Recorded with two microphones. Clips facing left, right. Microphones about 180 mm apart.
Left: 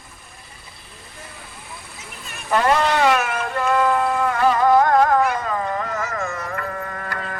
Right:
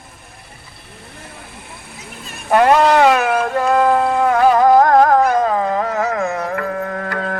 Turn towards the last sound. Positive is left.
turn(degrees=-60)  # may be behind; listen again after turning